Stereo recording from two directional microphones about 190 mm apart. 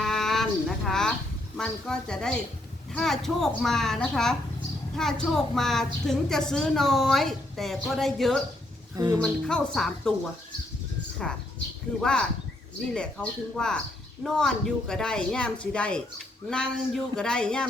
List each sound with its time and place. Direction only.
0.0 s a sound: centre (ahead or behind)
0.9 s a woman's voice: 5° left (ahead or behind)
9.0 s speech: 15° right (ahead or behind)
9.2 s a woman's voice: 5° left (ahead or behind)
11.2 s a woman's voice: centre (ahead or behind)